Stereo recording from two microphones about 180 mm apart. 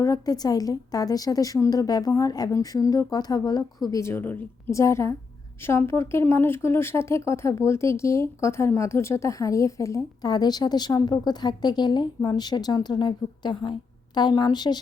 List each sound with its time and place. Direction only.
0.0 s a woman's voice: 20° left (ahead or behind)